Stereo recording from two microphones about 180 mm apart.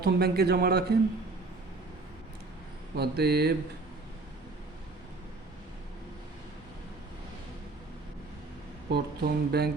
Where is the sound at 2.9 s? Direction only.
65° right (ahead or behind).